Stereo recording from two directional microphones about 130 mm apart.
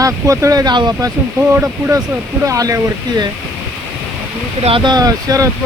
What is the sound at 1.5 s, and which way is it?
Speech, 15° right (ahead or behind).